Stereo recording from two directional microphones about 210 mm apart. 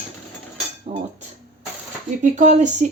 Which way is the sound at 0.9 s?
30° right (ahead or behind).